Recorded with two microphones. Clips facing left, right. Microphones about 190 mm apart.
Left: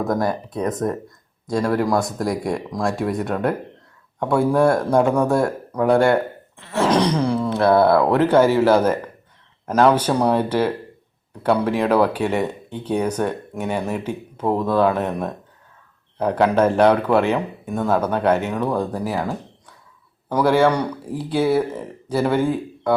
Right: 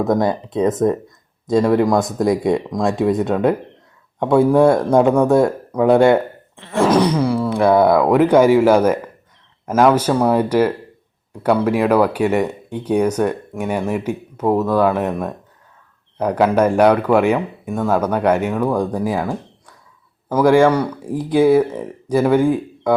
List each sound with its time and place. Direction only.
0.0 s speech: 20° right (ahead or behind)